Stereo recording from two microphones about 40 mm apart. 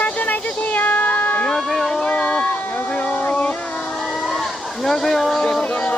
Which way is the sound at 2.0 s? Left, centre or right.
Left.